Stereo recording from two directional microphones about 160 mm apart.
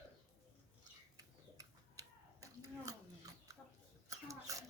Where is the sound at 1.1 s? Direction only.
20° right (ahead or behind).